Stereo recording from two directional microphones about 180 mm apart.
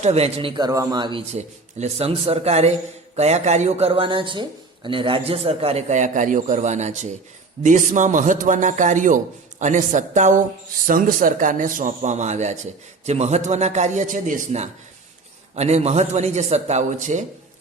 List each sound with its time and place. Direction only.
0.0 s a man's voice: 35° right (ahead or behind)
1.3 s a man's voice: 40° right (ahead or behind)